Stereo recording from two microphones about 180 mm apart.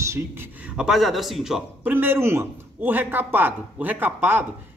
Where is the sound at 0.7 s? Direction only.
5° right (ahead or behind).